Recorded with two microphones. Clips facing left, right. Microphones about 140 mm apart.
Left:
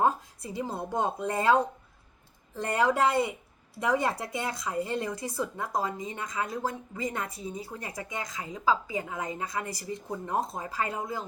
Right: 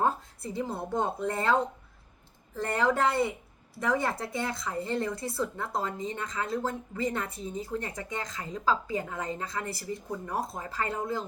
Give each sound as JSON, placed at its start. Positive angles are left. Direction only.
{"t": 0.0, "sound": "speech", "side_deg": 15}
{"t": 2.6, "sound": "speech", "side_deg": 15}